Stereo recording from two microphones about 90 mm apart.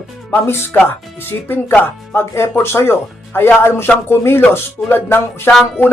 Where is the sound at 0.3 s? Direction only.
25° left (ahead or behind).